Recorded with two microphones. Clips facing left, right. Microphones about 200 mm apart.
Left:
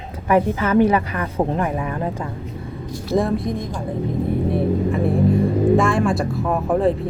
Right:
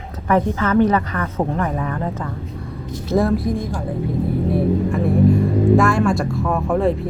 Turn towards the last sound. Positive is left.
turn(degrees=0)  # may be behind; listen again after turning